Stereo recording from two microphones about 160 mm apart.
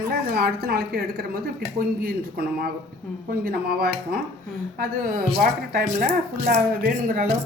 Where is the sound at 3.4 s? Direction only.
70° right (ahead or behind).